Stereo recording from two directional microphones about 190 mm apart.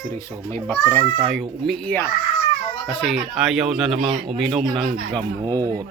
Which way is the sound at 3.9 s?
30° right (ahead or behind).